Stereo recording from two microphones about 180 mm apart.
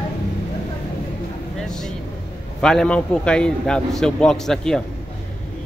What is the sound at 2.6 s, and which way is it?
Speech, 5° left (ahead or behind).